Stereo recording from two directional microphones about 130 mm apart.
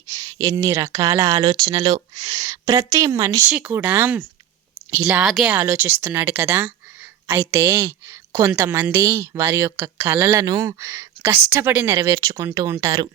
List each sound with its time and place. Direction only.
0.1 s a woman's voice: 30° right (ahead or behind); by 5.5 s centre (ahead or behind)
5.5 s a woman's voice: 15° right (ahead or behind)